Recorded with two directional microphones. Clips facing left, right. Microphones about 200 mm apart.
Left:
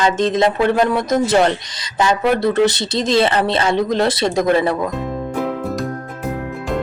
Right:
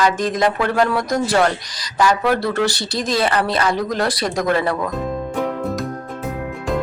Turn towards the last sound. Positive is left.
turn(degrees=20)  # may be behind; listen again after turning